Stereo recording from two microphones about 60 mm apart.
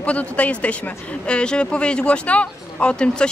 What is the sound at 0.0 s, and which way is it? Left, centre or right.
A woman's voice, left.